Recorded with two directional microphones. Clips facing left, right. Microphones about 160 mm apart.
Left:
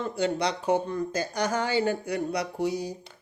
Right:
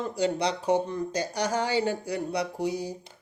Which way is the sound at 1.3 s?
30° right (ahead or behind).